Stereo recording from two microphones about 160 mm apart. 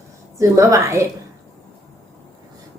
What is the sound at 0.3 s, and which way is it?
Speech, 20° right (ahead or behind).